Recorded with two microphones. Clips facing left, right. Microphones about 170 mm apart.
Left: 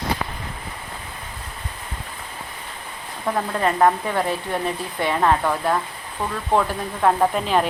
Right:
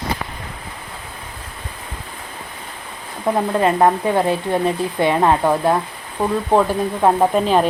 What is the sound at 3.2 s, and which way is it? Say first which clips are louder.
Speech: right 5 dB; 20° right (ahead or behind).